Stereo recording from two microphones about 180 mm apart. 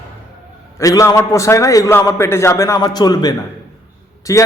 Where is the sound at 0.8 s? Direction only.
20° left (ahead or behind).